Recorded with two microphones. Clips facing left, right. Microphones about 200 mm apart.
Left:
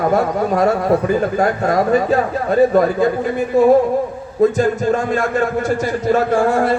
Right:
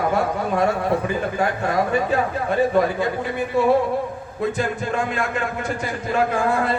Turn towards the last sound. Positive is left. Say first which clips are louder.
# left 6 dB
turn(degrees=45)  # may be behind; listen again after turning